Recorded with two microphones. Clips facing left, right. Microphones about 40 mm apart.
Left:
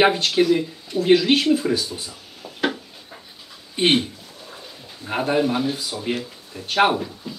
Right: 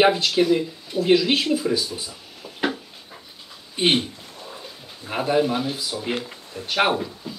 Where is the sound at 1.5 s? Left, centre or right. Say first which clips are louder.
Left 3 dB; left.